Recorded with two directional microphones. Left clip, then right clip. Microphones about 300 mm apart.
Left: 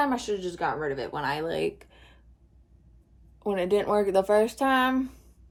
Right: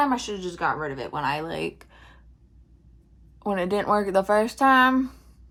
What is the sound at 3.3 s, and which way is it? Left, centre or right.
Speech, right.